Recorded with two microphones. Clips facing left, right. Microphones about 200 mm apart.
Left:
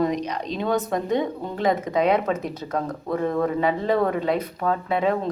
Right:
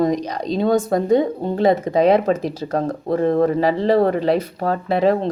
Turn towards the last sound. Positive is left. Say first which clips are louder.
# right 5 dB
turn(degrees=-35)  # may be behind; listen again after turning